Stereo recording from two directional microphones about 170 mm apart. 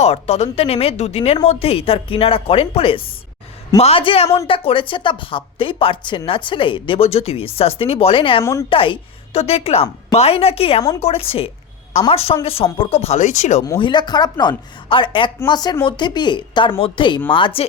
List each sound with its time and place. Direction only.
0.0 s speech: 40° left (ahead or behind)
13.7 s speech: 25° left (ahead or behind)